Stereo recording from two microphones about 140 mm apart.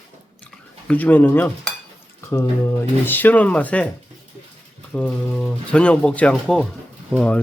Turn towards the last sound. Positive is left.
turn(degrees=10)  # may be behind; listen again after turning